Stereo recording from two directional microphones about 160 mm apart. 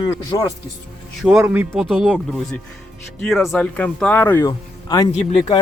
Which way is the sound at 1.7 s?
5° left (ahead or behind).